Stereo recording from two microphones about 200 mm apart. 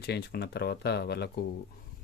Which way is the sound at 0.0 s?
55° left (ahead or behind).